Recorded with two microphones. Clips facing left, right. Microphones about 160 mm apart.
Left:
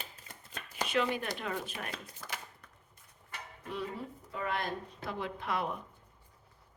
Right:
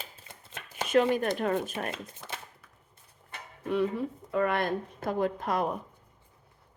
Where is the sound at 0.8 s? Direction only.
45° right (ahead or behind).